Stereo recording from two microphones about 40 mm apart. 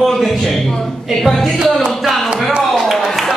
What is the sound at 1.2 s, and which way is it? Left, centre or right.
Speech, centre.